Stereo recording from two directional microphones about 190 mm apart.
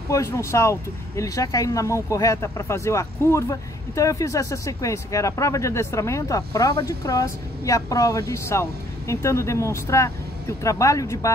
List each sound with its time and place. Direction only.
0.1 s speech: 15° left (ahead or behind)